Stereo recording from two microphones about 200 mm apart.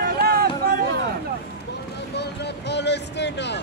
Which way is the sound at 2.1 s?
60° left (ahead or behind).